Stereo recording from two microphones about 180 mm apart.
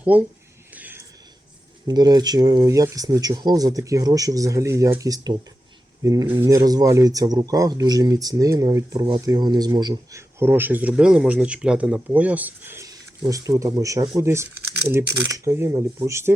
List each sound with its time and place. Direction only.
0.0 s speech: 10° right (ahead or behind)
0.8 s a sound: 10° right (ahead or behind)
1.9 s speech: 20° right (ahead or behind)